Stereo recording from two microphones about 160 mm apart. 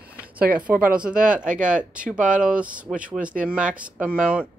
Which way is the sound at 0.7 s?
60° right (ahead or behind).